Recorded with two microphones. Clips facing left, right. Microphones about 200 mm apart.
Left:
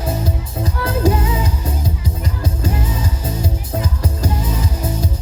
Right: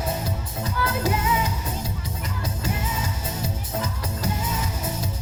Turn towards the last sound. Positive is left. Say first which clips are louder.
# left 6 dB
turn(degrees=30)  # may be behind; listen again after turning